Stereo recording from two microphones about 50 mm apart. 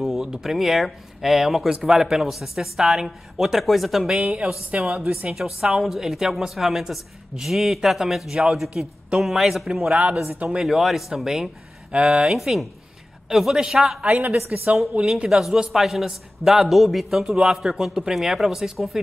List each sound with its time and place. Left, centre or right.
0.0 s a sound: centre
0.3 s speech: centre
4.2 s speech: centre
5.6 s speech: centre
9.9 s speech: centre
11.9 s speech: right
12.3 s speech: centre
14.0 s a woman's voice: right
15.2 s speech: centre
17.2 s speech: centre